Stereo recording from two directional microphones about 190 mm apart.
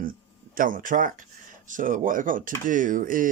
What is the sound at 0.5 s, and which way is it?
Speech, 45° right (ahead or behind).